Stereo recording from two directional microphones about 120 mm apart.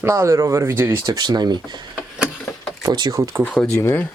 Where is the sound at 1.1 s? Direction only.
35° right (ahead or behind).